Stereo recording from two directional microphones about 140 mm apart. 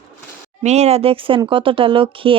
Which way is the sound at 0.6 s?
50° right (ahead or behind).